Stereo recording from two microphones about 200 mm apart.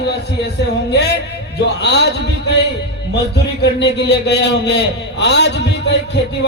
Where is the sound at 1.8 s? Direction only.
60° left (ahead or behind).